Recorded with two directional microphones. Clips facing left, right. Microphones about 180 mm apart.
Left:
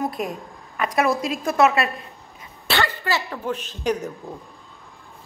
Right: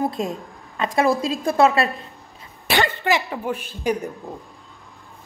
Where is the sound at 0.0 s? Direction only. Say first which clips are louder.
Right 2 dB; 25° right (ahead or behind).